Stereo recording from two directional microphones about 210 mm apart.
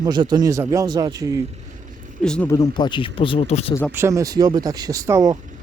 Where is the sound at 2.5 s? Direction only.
20° left (ahead or behind).